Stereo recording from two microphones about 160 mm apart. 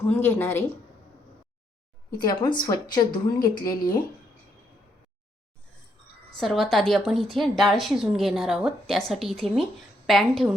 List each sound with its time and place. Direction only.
0.1 s speech: 15° left (ahead or behind)
2.1 s speech: 25° left (ahead or behind)
6.3 s a woman's voice: centre (ahead or behind)